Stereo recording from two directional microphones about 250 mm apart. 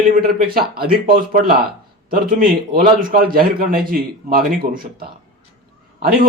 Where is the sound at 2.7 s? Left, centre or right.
Right.